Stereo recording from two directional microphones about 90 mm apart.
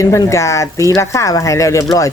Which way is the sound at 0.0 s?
35° left (ahead or behind).